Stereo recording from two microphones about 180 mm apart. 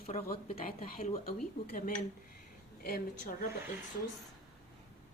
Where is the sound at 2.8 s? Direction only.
55° left (ahead or behind).